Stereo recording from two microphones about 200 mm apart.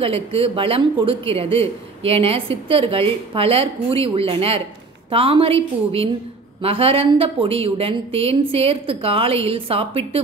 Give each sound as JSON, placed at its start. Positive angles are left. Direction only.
{"t": 0.0, "sound": "speech", "side_deg": -30}